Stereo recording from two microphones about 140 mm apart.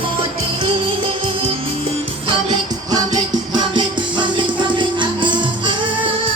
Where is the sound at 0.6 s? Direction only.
40° right (ahead or behind).